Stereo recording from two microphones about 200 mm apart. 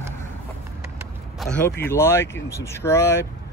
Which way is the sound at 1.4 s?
5° left (ahead or behind).